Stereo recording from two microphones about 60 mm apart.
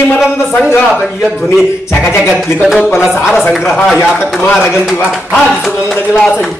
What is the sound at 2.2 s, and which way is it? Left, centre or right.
Speech, centre.